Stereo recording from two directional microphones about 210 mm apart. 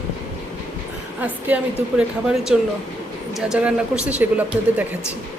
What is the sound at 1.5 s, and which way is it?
Speech, 5° right (ahead or behind).